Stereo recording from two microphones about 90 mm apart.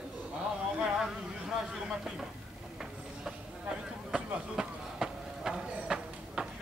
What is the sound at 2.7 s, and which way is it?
Clip-clop, 5° right (ahead or behind).